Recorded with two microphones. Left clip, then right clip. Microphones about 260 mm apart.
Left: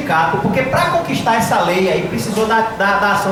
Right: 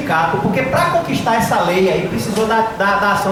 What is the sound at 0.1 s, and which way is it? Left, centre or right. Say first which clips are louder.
A woman's voice: left 1 dB; centre.